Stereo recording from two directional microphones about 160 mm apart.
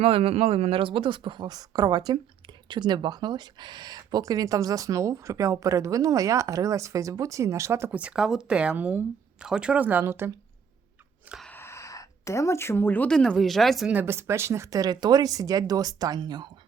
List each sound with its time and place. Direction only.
0.0 s speech: 35° right (ahead or behind); by 10.3 s 15° right (ahead or behind)
11.4 s speech: 15° left (ahead or behind)
13.9 s speech: 15° right (ahead or behind)